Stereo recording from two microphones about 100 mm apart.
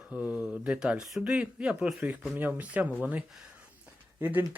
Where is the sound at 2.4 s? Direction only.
15° right (ahead or behind).